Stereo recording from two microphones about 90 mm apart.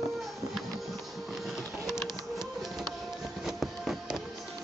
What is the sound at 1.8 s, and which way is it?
Music, 5° right (ahead or behind).